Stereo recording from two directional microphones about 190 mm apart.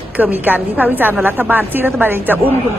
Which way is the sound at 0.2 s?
10° right (ahead or behind).